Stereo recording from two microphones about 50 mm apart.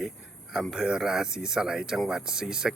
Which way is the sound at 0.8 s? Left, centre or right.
Centre.